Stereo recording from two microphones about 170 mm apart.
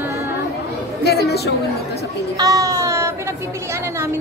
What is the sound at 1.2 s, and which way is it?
Speech, 70° left (ahead or behind).